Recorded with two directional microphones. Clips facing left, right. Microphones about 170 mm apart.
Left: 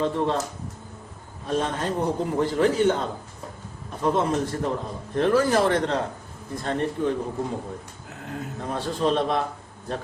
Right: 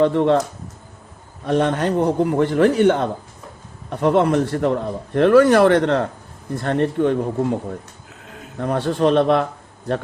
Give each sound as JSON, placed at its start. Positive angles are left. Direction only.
{"t": 0.0, "sound": "a man's voice", "side_deg": -70}
{"t": 1.5, "sound": "a man's voice", "side_deg": -70}
{"t": 8.6, "sound": "speech", "side_deg": -65}